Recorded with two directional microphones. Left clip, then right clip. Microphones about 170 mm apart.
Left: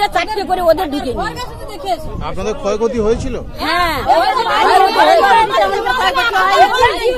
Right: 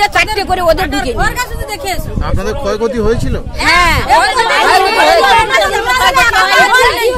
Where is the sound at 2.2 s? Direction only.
40° right (ahead or behind).